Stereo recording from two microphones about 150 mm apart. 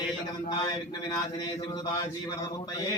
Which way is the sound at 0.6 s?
25° left (ahead or behind).